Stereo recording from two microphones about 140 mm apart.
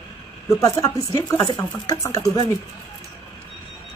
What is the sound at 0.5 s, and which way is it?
A man's voice, 25° left (ahead or behind).